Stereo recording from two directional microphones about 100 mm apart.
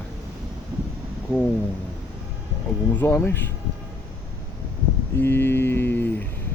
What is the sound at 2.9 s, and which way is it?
Mantra, 20° left (ahead or behind).